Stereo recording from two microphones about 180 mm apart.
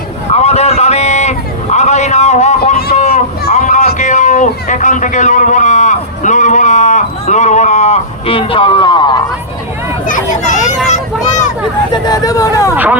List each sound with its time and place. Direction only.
0.3 s a sound: 35° left (ahead or behind)
10.1 s children playing: 45° left (ahead or behind)
11.9 s speech: 20° left (ahead or behind)
12.7 s speech: 10° right (ahead or behind)